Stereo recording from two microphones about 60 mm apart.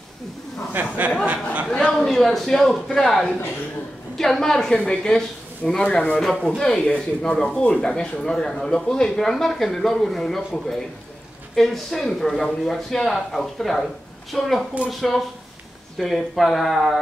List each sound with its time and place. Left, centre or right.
0.7 s speech: right
1.9 s speech: centre
6.1 s speech: centre